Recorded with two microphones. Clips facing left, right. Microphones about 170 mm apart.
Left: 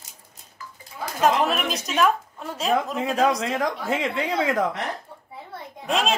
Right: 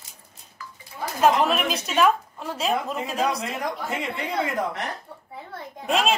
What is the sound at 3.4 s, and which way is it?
A woman's voice, 90° left.